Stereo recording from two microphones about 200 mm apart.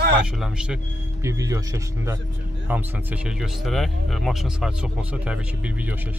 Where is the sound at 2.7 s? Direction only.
5° right (ahead or behind).